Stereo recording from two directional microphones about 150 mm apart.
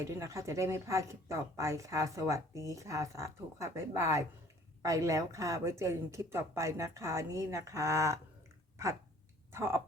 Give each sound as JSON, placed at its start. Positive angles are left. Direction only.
{"t": 0.0, "sound": "speech", "side_deg": -20}
{"t": 9.5, "sound": "speech", "side_deg": -15}